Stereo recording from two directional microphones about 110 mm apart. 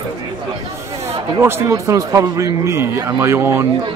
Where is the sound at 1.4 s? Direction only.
25° right (ahead or behind).